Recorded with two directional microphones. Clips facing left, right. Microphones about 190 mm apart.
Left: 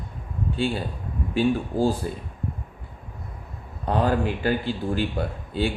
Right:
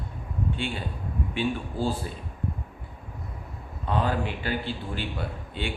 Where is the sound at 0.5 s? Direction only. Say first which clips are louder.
Left 6 dB; 40° left (ahead or behind).